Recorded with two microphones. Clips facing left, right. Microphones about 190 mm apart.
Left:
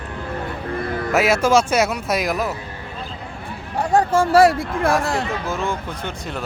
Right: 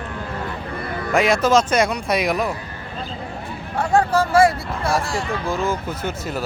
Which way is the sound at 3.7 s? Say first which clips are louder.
Left 1 dB; 15° left (ahead or behind).